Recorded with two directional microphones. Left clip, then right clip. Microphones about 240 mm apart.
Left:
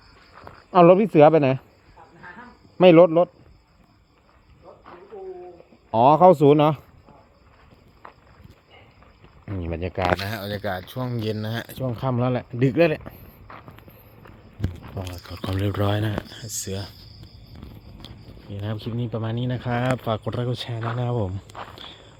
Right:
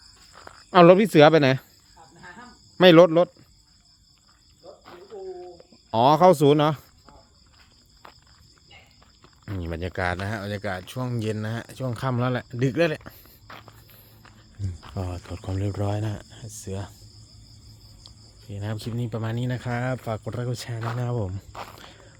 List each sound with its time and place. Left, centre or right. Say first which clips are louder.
0.3 s speech: even; right
2.2 s cricket: left 2 dB; centre
5.9 s speech: left 2 dB; centre
9.5 s a sound: left 2 dB; centre
10.2 s speech: left 2 dB; centre
11.2 s speech: left 2 dB; centre
11.8 s speech: left 2 dB; centre
15.1 s speech: left 4 dB; centre
18.6 s speech: left 2 dB; centre
19.8 s speech: left 5 dB; centre